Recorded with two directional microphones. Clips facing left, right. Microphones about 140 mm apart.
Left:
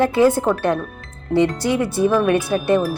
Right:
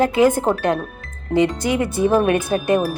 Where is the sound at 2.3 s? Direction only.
50° right (ahead or behind).